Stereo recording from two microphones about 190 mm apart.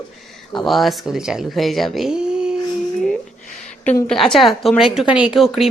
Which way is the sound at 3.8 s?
5° left (ahead or behind).